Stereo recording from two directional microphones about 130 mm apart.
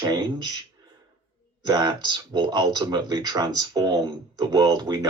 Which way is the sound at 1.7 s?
35° right (ahead or behind).